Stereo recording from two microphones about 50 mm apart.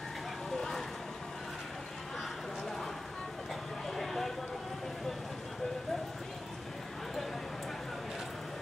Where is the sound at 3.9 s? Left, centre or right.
Centre.